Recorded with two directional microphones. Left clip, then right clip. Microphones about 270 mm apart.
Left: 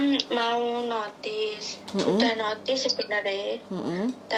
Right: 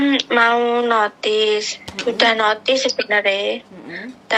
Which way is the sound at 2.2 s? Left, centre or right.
Right.